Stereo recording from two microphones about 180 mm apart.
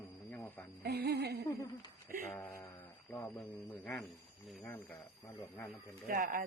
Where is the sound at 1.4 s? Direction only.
25° left (ahead or behind).